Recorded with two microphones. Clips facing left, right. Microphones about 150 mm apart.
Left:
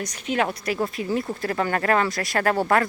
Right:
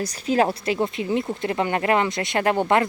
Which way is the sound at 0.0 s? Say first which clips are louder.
Right 4 dB; 35° right (ahead or behind).